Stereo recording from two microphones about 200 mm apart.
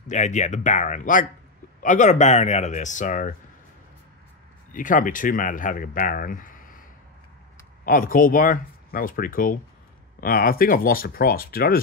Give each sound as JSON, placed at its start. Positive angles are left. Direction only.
{"t": 0.1, "sound": "speech", "side_deg": 35}
{"t": 4.7, "sound": "speech", "side_deg": 40}
{"t": 7.8, "sound": "speech", "side_deg": 45}